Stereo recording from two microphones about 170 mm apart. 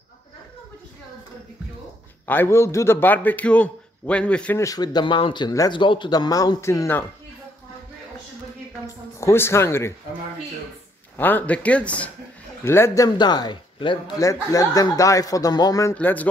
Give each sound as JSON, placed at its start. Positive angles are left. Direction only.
{"t": 2.2, "sound": "a man's voice", "side_deg": 15}
{"t": 4.6, "sound": "a man's voice", "side_deg": 25}
{"t": 8.8, "sound": "speech", "side_deg": 15}
{"t": 11.1, "sound": "a man's voice", "side_deg": 10}
{"t": 15.9, "sound": "a man's voice", "side_deg": 10}